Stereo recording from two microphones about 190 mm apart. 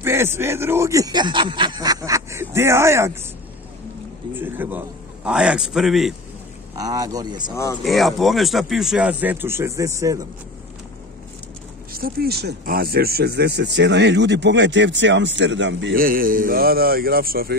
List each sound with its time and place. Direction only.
0.0 s speech: 10° right (ahead or behind)
4.3 s a man's voice: 10° right (ahead or behind)
6.7 s speech: 20° right (ahead or behind)
7.8 s speech: centre (ahead or behind); by 10.2 s 15° right (ahead or behind)
11.9 s speech: 50° right (ahead or behind); by 15.9 s 70° right (ahead or behind)
15.9 s speech: 50° right (ahead or behind)